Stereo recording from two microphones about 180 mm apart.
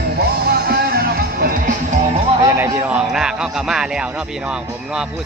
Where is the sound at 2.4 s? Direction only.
15° right (ahead or behind).